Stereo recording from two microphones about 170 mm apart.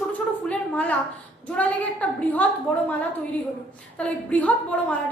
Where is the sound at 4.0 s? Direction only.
10° left (ahead or behind).